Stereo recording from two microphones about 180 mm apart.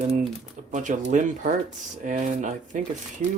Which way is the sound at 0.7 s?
45° right (ahead or behind).